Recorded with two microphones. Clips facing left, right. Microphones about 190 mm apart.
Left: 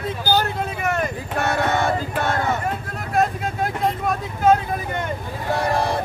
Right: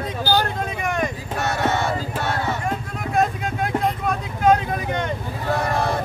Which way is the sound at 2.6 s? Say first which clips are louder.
Right 1 dB; centre (ahead or behind).